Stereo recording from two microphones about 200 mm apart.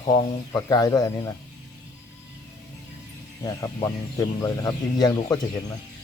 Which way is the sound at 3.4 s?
15° left (ahead or behind).